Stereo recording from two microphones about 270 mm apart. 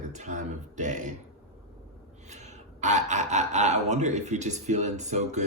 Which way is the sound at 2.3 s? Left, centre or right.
Right.